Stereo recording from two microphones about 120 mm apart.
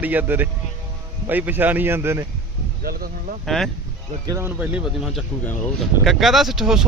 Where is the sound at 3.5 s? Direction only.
Centre (ahead or behind).